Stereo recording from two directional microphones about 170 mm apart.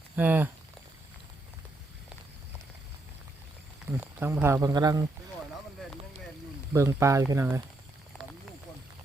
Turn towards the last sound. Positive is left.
turn(degrees=-15)  # may be behind; listen again after turning